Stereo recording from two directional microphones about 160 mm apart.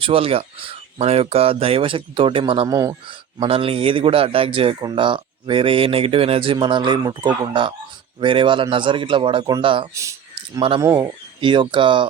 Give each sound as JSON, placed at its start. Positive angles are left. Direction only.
{"t": 0.0, "sound": "speech", "side_deg": -35}
{"t": 2.6, "sound": "speech", "side_deg": -20}
{"t": 3.4, "sound": "speech", "side_deg": -35}
{"t": 9.9, "sound": "speech", "side_deg": -20}
{"t": 10.3, "sound": "speech", "side_deg": -30}
{"t": 10.8, "sound": "speech", "side_deg": -20}
{"t": 11.3, "sound": "speech", "side_deg": -30}